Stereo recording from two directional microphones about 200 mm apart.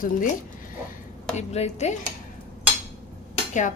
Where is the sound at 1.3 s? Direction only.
35° left (ahead or behind).